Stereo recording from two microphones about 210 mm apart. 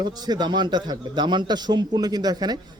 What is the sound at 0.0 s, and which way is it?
A man's voice, 20° right (ahead or behind).